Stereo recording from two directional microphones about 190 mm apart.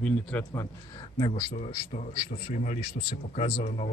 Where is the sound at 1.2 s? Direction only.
20° left (ahead or behind).